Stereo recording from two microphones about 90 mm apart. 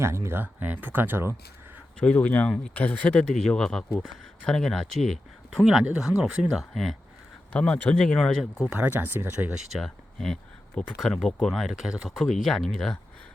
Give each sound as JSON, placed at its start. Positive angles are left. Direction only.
{"t": 0.0, "sound": "speech", "side_deg": -30}
{"t": 2.0, "sound": "speech", "side_deg": 20}
{"t": 5.8, "sound": "speech", "side_deg": -10}
{"t": 7.5, "sound": "speech", "side_deg": 10}
{"t": 8.6, "sound": "speech", "side_deg": -20}
{"t": 9.7, "sound": "speech", "side_deg": 5}